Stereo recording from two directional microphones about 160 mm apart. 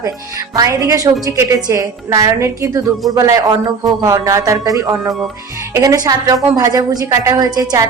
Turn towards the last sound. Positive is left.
turn(degrees=-25)  # may be behind; listen again after turning